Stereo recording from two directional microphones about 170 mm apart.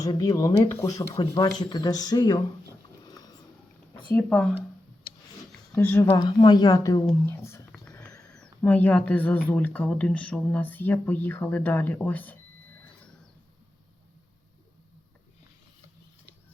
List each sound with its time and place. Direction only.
0.0 s speech: 20° left (ahead or behind)
3.0 s a sound: 25° left (ahead or behind)
4.1 s speech: 5° left (ahead or behind)
5.7 s speech: 10° left (ahead or behind)
6.1 s speech: 25° left (ahead or behind)
7.7 s a sound: 5° left (ahead or behind)
8.2 s speech: 5° left (ahead or behind)